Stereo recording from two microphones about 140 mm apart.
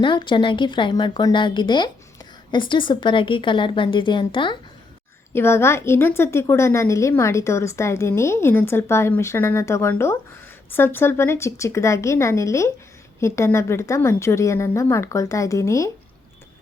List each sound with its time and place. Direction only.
0.0 s a woman's voice: 35° left (ahead or behind)
5.3 s a woman's voice: 15° left (ahead or behind)